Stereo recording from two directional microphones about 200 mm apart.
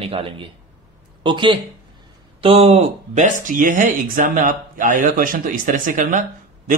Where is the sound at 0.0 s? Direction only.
30° right (ahead or behind).